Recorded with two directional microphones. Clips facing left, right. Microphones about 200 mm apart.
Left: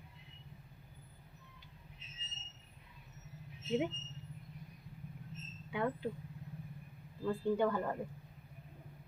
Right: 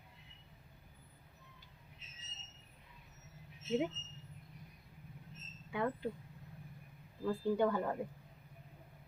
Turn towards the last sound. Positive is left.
turn(degrees=0)  # may be behind; listen again after turning